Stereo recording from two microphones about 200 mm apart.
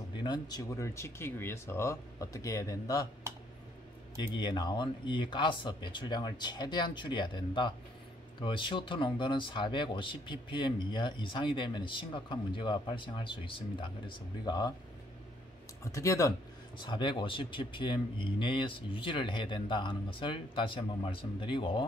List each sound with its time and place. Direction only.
0.2 s speech: 20° left (ahead or behind)
4.4 s speech: 20° left (ahead or behind)
15.8 s speech: 15° left (ahead or behind)